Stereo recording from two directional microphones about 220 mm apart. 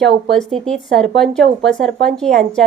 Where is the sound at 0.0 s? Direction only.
Centre (ahead or behind).